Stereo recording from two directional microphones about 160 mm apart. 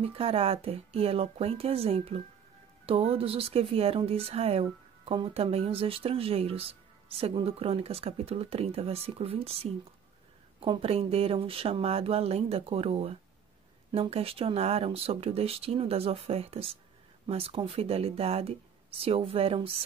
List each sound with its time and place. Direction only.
0.0 s speech: 35° right (ahead or behind)